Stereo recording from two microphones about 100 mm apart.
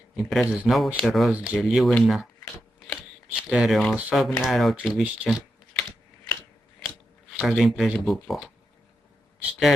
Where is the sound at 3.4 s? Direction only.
5° right (ahead or behind).